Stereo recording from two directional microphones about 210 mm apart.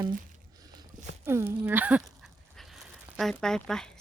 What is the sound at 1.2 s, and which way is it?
Speech, 10° right (ahead or behind).